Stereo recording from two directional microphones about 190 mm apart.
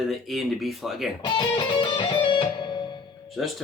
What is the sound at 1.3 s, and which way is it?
Music, 25° left (ahead or behind).